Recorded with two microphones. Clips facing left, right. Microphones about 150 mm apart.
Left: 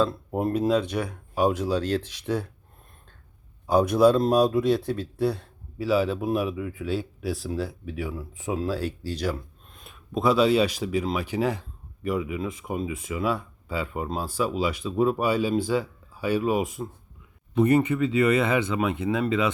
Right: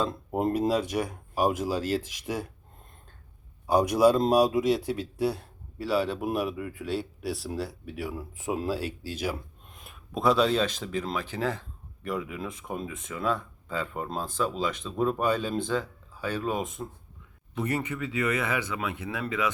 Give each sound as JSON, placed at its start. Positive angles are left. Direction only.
{"t": 0.3, "sound": "speech", "side_deg": -15}
{"t": 3.7, "sound": "speech", "side_deg": -10}
{"t": 5.7, "sound": "speech", "side_deg": 5}
{"t": 12.0, "sound": "speech", "side_deg": 5}
{"t": 17.9, "sound": "speech", "side_deg": 30}